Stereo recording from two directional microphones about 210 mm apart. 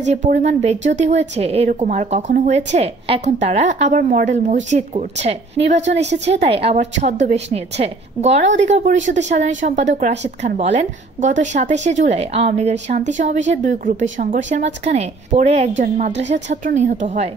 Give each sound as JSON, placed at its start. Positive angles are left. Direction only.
{"t": 0.0, "sound": "a woman's voice", "side_deg": -35}
{"t": 16.1, "sound": "speech", "side_deg": -55}
{"t": 16.6, "sound": "a woman's voice", "side_deg": -35}